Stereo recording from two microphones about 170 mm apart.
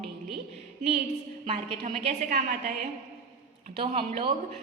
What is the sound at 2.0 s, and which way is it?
Speech, 40° right (ahead or behind).